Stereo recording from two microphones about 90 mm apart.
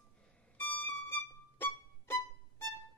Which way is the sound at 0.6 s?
20° left (ahead or behind).